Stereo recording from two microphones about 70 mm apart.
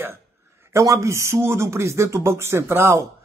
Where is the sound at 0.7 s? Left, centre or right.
Right.